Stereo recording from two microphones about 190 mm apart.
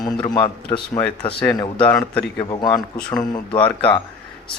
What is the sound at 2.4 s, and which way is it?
Speech, 20° left (ahead or behind).